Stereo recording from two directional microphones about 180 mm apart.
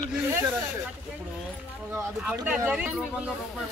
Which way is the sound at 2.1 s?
5° right (ahead or behind).